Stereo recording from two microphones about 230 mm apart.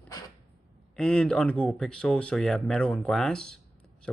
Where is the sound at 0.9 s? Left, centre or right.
Centre.